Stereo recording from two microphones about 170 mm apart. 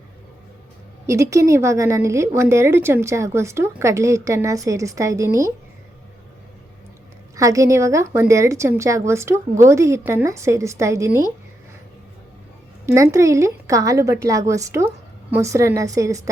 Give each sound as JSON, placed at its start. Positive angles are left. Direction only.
{"t": 1.0, "sound": "a woman's voice", "side_deg": -15}
{"t": 7.3, "sound": "a woman's voice", "side_deg": -20}
{"t": 12.8, "sound": "a woman's voice", "side_deg": -15}